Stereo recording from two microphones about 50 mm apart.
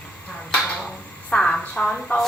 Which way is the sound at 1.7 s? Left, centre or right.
Centre.